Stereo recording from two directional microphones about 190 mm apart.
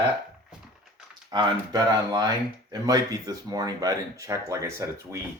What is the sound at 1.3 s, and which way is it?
Speech, 25° right (ahead or behind).